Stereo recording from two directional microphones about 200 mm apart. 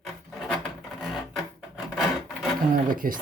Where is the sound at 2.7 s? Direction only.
45° right (ahead or behind).